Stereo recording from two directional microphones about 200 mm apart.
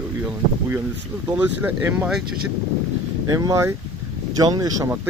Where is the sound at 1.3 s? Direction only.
10° right (ahead or behind).